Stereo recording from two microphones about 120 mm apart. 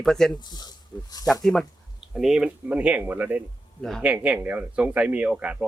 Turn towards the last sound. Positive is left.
turn(degrees=-10)  # may be behind; listen again after turning